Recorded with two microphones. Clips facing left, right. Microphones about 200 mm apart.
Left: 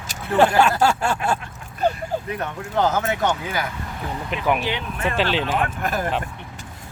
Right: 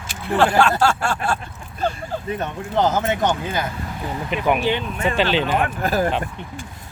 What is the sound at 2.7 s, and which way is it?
Speech, 20° right (ahead or behind).